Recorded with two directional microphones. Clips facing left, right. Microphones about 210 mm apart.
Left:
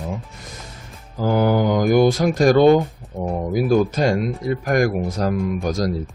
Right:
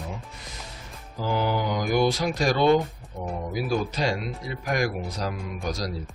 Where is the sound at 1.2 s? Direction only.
50° left (ahead or behind).